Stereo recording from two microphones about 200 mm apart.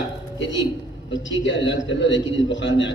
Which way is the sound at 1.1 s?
65° left (ahead or behind).